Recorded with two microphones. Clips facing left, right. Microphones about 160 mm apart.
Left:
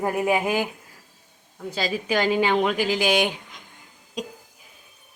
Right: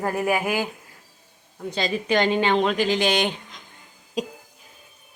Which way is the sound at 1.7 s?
5° left (ahead or behind).